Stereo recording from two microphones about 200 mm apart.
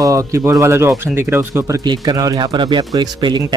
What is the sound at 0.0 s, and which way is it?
Speech, 15° right (ahead or behind).